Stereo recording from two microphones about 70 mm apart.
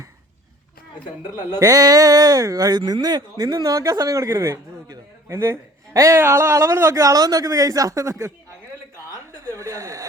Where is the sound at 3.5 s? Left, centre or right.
Right.